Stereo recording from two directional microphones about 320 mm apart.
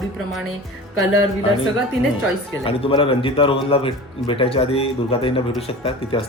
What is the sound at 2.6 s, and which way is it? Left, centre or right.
Speech, centre.